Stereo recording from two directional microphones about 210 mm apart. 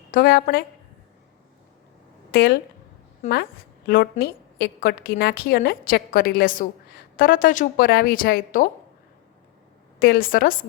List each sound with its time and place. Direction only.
0.1 s a woman's voice: 45° left (ahead or behind)
2.3 s a woman's voice: 45° left (ahead or behind)
3.2 s a woman's voice: 35° left (ahead or behind)
3.8 s a woman's voice: 50° left (ahead or behind)
10.0 s a woman's voice: 45° left (ahead or behind)